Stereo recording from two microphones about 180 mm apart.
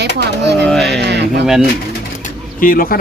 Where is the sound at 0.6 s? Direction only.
5° left (ahead or behind).